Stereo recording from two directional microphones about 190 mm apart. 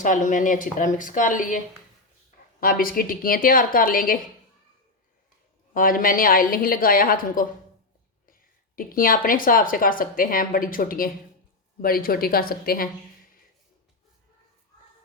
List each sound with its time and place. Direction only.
0.0 s speech: 45° left (ahead or behind)
5.7 s speech: 45° left (ahead or behind)